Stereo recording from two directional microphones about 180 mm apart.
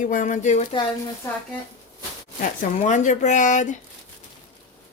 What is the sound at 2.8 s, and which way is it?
Speech, 45° left (ahead or behind).